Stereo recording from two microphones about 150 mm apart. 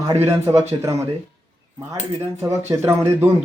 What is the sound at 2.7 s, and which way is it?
Speech, 15° right (ahead or behind).